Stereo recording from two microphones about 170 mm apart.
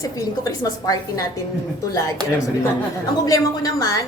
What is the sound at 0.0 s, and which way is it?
A woman's voice, 20° left (ahead or behind).